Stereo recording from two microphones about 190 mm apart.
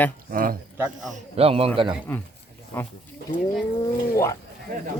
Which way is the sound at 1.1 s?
30° right (ahead or behind).